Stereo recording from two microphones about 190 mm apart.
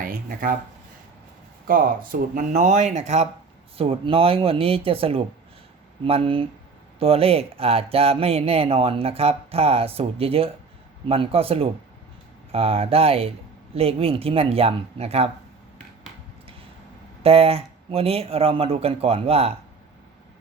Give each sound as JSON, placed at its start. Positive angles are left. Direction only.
{"t": 0.0, "sound": "speech", "side_deg": -45}
{"t": 1.6, "sound": "speech", "side_deg": -50}
{"t": 17.2, "sound": "speech", "side_deg": -30}